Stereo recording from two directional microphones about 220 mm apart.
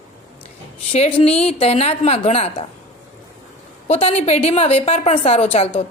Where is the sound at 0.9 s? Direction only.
25° left (ahead or behind).